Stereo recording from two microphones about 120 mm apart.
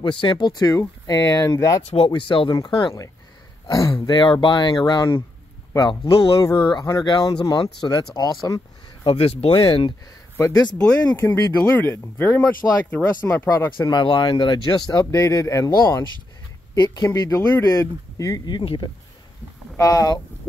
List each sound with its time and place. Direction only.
0.0 s speech: 45° left (ahead or behind); by 1.8 s 25° left (ahead or behind)
2.0 s speech: 45° left (ahead or behind)
9.0 s speech: 55° left (ahead or behind)
11.1 s speech: 20° left (ahead or behind)
13.7 s speech: 40° left (ahead or behind)
19.8 s speech: 30° left (ahead or behind)